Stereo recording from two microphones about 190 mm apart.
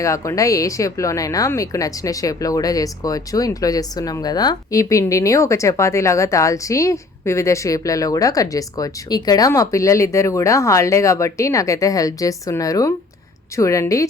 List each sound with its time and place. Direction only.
0.0 s speech: 15° left (ahead or behind)